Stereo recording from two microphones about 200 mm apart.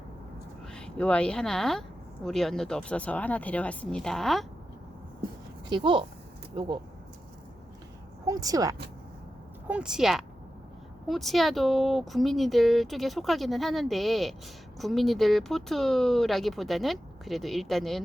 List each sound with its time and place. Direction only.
0.7 s speech: 5° left (ahead or behind)
5.6 s speech: 25° right (ahead or behind)
8.3 s speech: 15° right (ahead or behind)
9.6 s speech: 5° right (ahead or behind)